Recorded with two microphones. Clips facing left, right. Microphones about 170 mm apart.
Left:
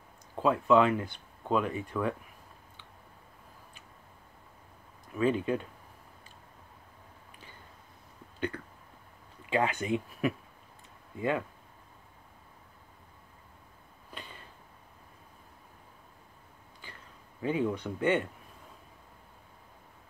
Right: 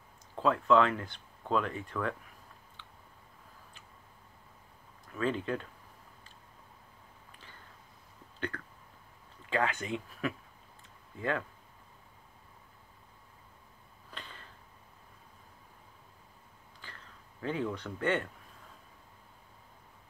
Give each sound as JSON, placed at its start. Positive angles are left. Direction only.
{"t": 0.4, "sound": "speech", "side_deg": 10}
{"t": 5.1, "sound": "speech", "side_deg": 10}
{"t": 8.5, "sound": "speech", "side_deg": 20}
{"t": 14.1, "sound": "a sound", "side_deg": 10}
{"t": 17.4, "sound": "speech", "side_deg": 10}